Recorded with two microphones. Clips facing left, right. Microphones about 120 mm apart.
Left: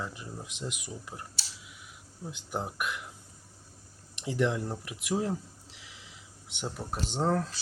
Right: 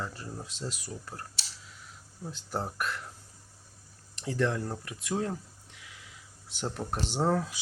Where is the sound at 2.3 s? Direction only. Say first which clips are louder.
Right 1 dB; 15° left (ahead or behind).